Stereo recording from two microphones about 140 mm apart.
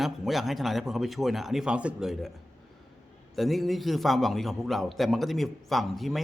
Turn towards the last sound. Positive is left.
turn(degrees=0)  # may be behind; listen again after turning